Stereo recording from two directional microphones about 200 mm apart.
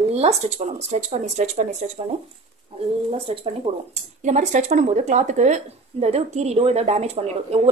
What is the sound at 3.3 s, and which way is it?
A woman's voice, 30° right (ahead or behind).